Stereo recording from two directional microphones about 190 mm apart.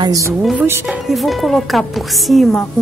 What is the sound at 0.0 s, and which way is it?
Speech, 20° right (ahead or behind).